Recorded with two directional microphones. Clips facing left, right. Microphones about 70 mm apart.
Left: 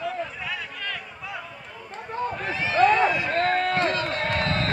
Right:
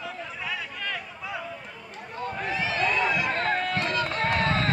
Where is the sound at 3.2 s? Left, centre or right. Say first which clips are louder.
Left 3 dB; centre.